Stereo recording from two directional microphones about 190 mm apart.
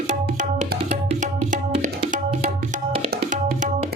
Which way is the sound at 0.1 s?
40° right (ahead or behind).